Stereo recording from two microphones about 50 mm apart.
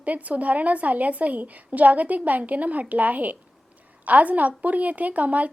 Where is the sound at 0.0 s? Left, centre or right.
Right.